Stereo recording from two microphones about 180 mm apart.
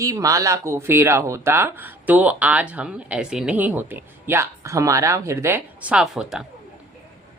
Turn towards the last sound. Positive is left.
turn(degrees=-5)  # may be behind; listen again after turning